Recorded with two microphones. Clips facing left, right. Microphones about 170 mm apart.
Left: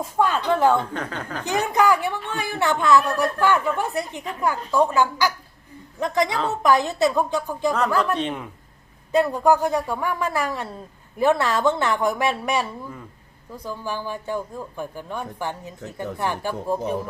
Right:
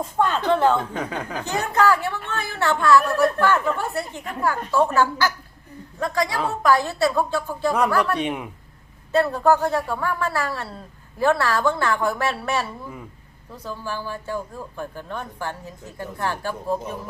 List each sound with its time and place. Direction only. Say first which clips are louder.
0.0 s speech: even; 10° left (ahead or behind)
0.9 s speech: right 2 dB; 10° right (ahead or behind)
1.5 s a woman's voice: left 1 dB; 15° left (ahead or behind)
8.1 s speech: right 1 dB; 10° right (ahead or behind)
9.1 s speech: even; 15° left (ahead or behind)